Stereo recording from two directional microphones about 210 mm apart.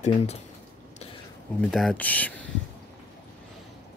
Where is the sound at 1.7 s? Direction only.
5° left (ahead or behind).